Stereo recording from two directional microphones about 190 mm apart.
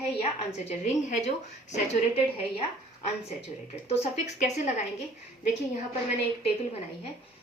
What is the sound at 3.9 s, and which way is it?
Speech, 35° left (ahead or behind).